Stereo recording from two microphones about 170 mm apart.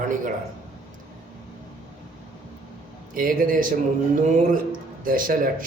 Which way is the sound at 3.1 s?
55° right (ahead or behind).